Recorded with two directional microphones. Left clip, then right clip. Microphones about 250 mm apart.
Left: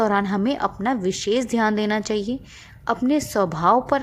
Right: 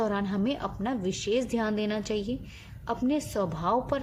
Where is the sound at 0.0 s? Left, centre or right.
Left.